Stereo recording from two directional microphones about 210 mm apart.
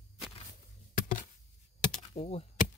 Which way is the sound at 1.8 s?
30° left (ahead or behind).